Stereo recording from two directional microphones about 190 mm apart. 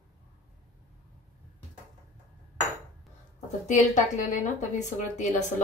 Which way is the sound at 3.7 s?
40° left (ahead or behind).